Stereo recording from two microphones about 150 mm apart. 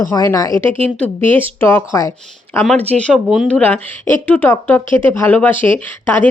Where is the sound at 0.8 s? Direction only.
10° left (ahead or behind).